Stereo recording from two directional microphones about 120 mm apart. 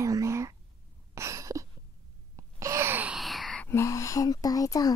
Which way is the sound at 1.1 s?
25° right (ahead or behind).